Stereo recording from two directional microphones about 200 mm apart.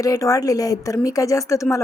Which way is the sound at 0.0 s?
15° left (ahead or behind).